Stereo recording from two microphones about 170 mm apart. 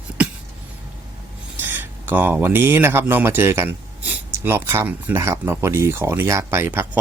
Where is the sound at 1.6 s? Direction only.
10° right (ahead or behind).